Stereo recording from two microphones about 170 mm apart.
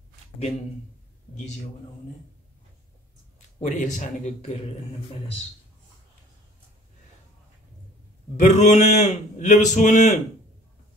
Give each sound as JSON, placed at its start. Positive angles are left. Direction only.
{"t": 3.6, "sound": "a man's voice", "side_deg": 45}
{"t": 8.4, "sound": "a man's voice", "side_deg": 40}